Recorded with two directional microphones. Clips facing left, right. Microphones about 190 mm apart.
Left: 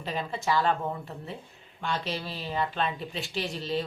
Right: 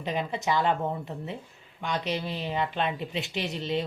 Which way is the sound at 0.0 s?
20° right (ahead or behind).